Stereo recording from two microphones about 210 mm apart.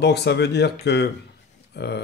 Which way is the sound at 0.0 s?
55° left (ahead or behind).